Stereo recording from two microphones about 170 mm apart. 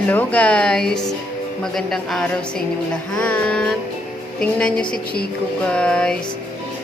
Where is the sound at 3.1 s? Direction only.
5° left (ahead or behind).